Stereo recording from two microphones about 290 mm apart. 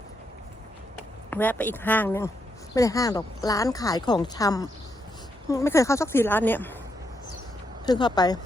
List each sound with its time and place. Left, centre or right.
1.3 s speech: centre
7.9 s speech: centre